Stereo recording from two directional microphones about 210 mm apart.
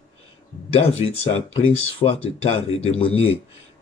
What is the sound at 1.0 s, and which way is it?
Speech, 25° left (ahead or behind).